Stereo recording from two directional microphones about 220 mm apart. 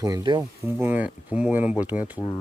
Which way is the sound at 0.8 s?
5° right (ahead or behind).